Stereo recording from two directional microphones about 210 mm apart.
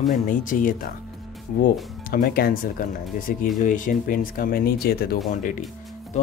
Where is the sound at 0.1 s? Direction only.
40° left (ahead or behind).